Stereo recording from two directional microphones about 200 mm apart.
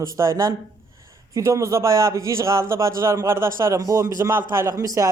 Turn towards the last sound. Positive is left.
turn(degrees=-15)  # may be behind; listen again after turning